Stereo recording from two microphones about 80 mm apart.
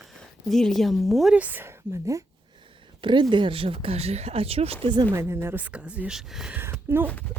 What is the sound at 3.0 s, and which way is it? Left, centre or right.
Speech, right.